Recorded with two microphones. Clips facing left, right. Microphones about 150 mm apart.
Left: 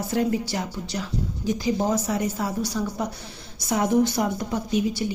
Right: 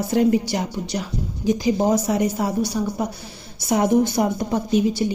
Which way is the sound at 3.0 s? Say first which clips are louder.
Right 2 dB; 5° right (ahead or behind).